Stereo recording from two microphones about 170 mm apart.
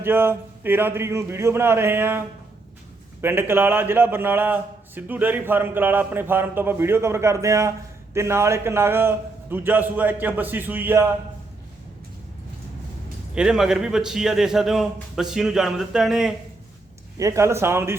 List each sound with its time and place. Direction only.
0.0 s a man's voice: 15° right (ahead or behind)
13.3 s speech: 5° right (ahead or behind)
17.2 s a man's voice: 20° right (ahead or behind)